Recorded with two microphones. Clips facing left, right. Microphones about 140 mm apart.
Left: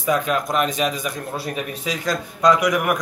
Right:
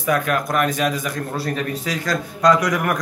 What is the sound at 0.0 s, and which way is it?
A man's voice, 20° left (ahead or behind).